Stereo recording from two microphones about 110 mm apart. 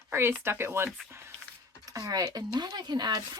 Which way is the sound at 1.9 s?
30° right (ahead or behind).